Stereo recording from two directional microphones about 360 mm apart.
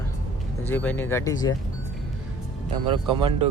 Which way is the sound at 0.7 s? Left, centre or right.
Centre.